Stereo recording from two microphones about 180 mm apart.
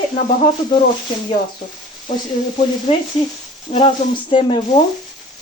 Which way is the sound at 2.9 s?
30° left (ahead or behind).